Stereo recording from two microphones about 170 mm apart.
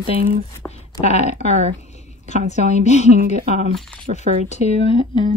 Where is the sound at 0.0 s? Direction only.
55° right (ahead or behind).